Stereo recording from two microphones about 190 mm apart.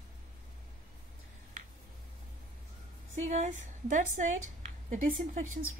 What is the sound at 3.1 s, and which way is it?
Speech, 40° right (ahead or behind).